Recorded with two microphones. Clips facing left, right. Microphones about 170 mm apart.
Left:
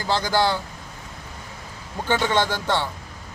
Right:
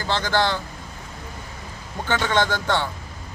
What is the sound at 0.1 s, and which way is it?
Speech, 10° left (ahead or behind).